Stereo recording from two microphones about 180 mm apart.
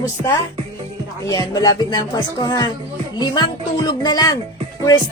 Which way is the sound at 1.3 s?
20° left (ahead or behind).